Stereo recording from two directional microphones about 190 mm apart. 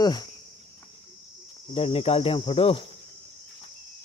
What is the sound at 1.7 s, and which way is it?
Speech, 30° left (ahead or behind).